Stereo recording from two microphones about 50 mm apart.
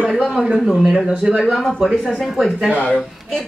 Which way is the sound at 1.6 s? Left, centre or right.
Centre.